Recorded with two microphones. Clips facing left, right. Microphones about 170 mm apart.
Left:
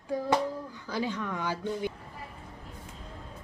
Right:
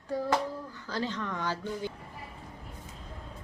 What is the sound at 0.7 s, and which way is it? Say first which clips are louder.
Speech: left 2 dB; 15° left (ahead or behind).